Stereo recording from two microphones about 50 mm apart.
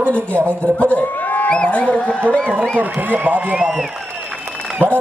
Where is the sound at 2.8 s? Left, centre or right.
Right.